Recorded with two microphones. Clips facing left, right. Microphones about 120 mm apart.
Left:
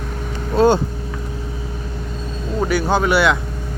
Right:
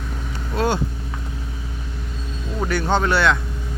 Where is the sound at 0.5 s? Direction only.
30° left (ahead or behind).